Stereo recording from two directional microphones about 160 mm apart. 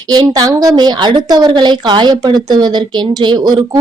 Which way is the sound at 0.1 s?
25° right (ahead or behind).